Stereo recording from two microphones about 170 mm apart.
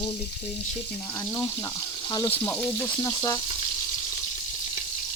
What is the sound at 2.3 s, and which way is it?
Speech, 15° left (ahead or behind).